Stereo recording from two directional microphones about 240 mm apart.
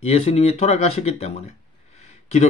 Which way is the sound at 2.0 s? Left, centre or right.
Left.